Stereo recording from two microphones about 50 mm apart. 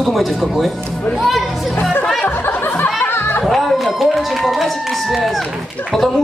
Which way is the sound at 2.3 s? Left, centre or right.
Left.